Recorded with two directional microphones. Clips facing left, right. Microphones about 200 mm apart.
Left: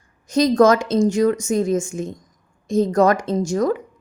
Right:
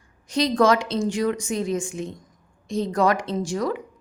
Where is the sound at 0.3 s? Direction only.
45° left (ahead or behind).